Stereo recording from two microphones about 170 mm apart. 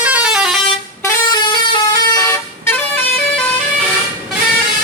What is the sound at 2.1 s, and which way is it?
Vehicle, 20° left (ahead or behind).